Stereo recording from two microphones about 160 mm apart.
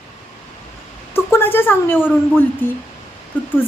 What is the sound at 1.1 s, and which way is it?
A woman's voice, 15° left (ahead or behind).